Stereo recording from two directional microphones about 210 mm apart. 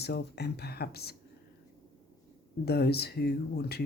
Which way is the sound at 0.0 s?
50° left (ahead or behind).